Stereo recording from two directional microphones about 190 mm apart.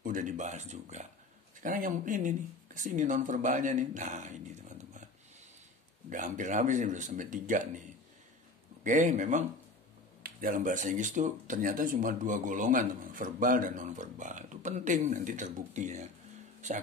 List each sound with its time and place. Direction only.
0.0 s speech: 45° right (ahead or behind)
6.0 s speech: 40° right (ahead or behind)
8.8 s speech: 40° right (ahead or behind)